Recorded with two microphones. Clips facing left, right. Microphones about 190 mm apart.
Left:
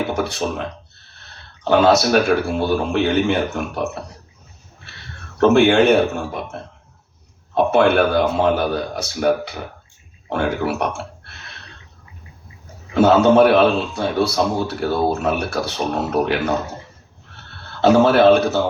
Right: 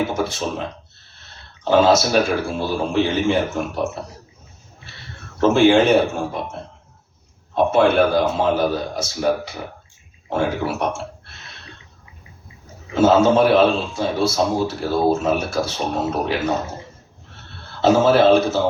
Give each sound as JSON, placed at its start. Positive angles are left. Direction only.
{"t": 0.1, "sound": "a sound", "side_deg": 65}
{"t": 1.6, "sound": "a man's voice", "side_deg": 65}
{"t": 5.4, "sound": "a man's voice", "side_deg": 65}
{"t": 7.5, "sound": "a man's voice", "side_deg": 65}
{"t": 12.9, "sound": "a man's voice", "side_deg": 60}
{"t": 17.8, "sound": "a man's voice", "side_deg": 65}